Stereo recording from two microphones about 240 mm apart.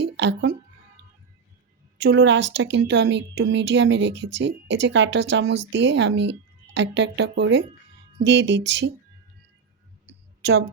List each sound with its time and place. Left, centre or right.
0.0 s music: right
2.0 s speech: right